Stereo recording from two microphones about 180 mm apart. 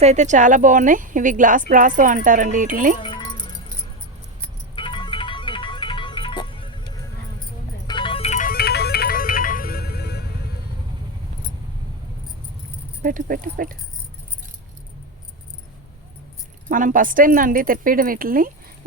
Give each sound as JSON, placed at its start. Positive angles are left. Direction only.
{"t": 0.0, "sound": "speech", "side_deg": -40}
{"t": 3.0, "sound": "music", "side_deg": 25}
{"t": 4.7, "sound": "music", "side_deg": 25}
{"t": 13.0, "sound": "speech", "side_deg": -50}
{"t": 16.6, "sound": "speech", "side_deg": -45}